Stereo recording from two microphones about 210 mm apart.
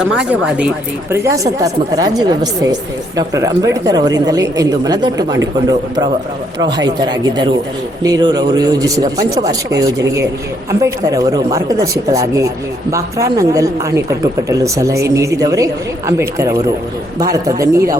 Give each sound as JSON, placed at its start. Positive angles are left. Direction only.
{"t": 0.0, "sound": "speech", "side_deg": -5}
{"t": 6.6, "sound": "speech", "side_deg": -20}